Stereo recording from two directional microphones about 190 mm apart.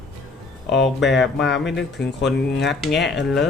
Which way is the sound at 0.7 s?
70° left (ahead or behind).